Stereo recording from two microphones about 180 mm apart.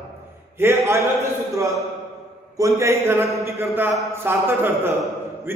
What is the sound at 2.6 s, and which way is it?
A man's voice, 15° right (ahead or behind).